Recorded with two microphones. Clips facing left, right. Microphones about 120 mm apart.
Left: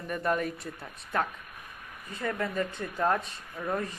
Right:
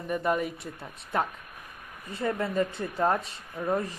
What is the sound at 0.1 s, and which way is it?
Speech, 10° right (ahead or behind).